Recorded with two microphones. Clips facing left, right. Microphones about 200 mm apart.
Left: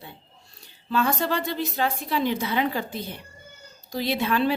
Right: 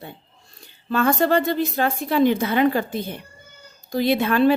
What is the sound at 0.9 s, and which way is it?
A woman's voice, 55° right (ahead or behind).